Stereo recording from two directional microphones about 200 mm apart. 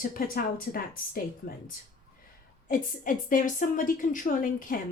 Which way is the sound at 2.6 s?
45° left (ahead or behind).